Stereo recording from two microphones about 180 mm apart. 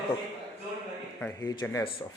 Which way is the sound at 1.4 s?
25° left (ahead or behind).